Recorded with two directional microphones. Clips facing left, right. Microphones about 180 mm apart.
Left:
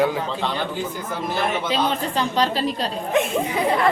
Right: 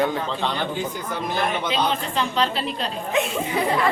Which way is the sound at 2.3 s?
40° left (ahead or behind).